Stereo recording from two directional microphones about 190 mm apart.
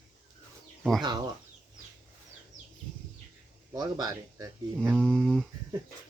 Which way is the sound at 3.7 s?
20° right (ahead or behind).